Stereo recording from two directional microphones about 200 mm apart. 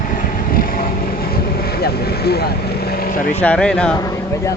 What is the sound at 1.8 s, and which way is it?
Speech, 50° left (ahead or behind).